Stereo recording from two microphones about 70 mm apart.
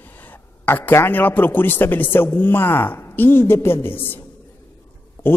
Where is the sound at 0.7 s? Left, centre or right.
Left.